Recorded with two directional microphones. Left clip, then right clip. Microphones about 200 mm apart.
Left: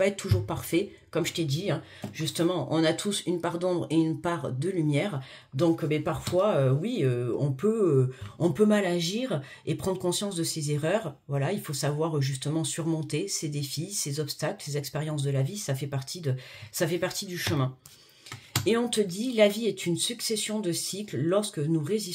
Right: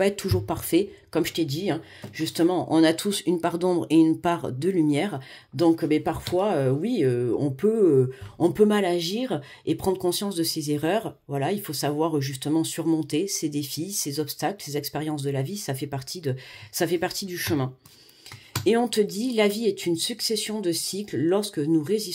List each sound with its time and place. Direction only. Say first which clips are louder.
0.0 s speech: right 3 dB; 35° right (ahead or behind)
18.7 s speech: right 5 dB; 40° right (ahead or behind)